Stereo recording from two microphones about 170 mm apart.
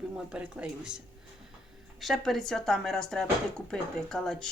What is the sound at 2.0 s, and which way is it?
A woman's voice, centre (ahead or behind).